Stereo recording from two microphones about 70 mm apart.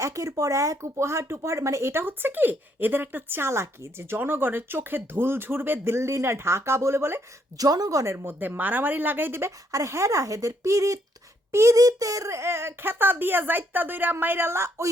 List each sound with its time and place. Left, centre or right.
0.0 s speech: right
7.6 s speech: right
9.7 s speech: right